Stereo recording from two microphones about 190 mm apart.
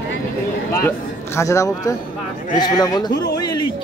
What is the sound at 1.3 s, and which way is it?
Speech, 15° left (ahead or behind).